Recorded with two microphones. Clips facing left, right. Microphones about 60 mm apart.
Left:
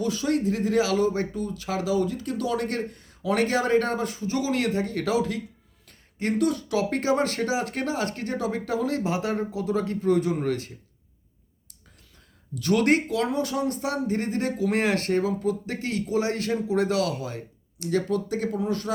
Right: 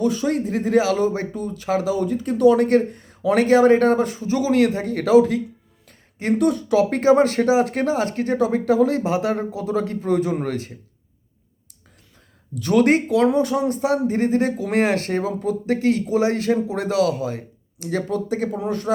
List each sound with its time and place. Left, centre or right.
0.0 s speech: right
12.6 s speech: centre